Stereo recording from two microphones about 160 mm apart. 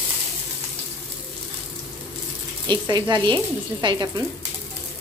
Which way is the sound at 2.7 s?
30° right (ahead or behind).